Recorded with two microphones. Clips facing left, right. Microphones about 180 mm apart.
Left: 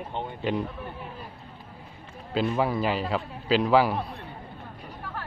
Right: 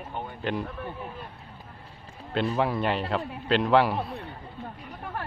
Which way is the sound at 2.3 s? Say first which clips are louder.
Left 1 dB; centre (ahead or behind).